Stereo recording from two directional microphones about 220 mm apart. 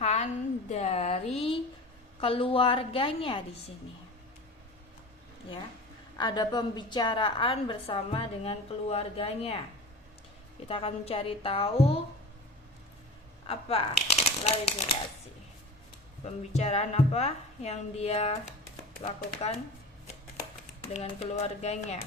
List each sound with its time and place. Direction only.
0.0 s a sound: 30° left (ahead or behind)
2.2 s a woman's voice: 25° left (ahead or behind)
6.1 s a woman's voice: 20° left (ahead or behind)
10.7 s a woman's voice: 25° left (ahead or behind)
13.5 s speech: 25° left (ahead or behind)
16.2 s a woman's voice: 30° left (ahead or behind)
20.8 s a woman's voice: 25° left (ahead or behind)